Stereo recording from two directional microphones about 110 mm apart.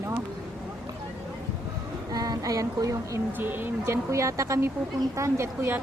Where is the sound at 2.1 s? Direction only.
35° right (ahead or behind).